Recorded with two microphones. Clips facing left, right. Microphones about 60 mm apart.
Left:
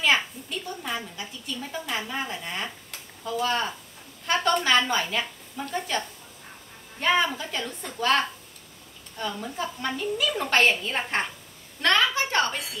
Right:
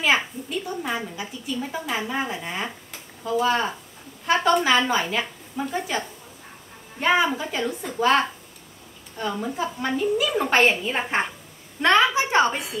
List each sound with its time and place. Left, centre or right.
0.0 s a woman's voice: centre